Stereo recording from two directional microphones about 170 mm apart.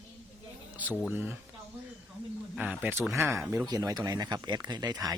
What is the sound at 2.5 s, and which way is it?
Speech, 10° right (ahead or behind).